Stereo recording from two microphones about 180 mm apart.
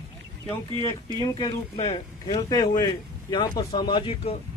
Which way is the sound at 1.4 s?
25° left (ahead or behind).